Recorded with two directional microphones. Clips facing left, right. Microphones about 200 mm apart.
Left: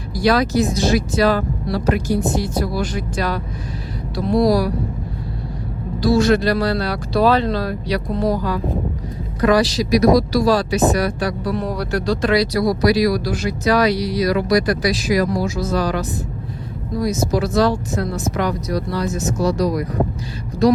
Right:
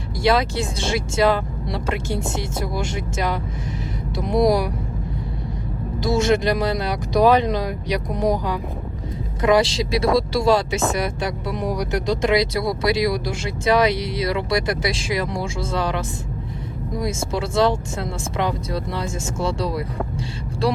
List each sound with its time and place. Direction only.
0.2 s speech: 25° right (ahead or behind)
6.0 s speech: 20° right (ahead or behind)